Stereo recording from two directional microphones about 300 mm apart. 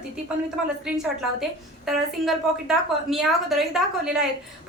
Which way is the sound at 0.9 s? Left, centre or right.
Centre.